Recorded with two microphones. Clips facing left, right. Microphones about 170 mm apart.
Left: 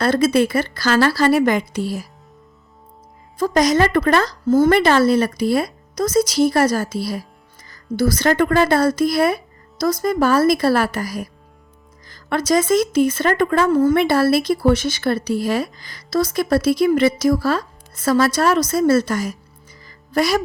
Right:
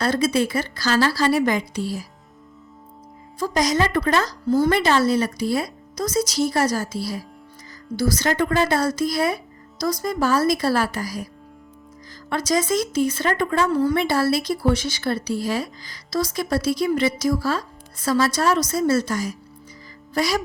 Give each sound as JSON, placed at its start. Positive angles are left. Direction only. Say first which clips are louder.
{"t": 0.0, "sound": "speech", "louder": "left 5 dB", "side_deg": 55}
{"t": 3.3, "sound": "speech", "louder": "left 5 dB", "side_deg": 60}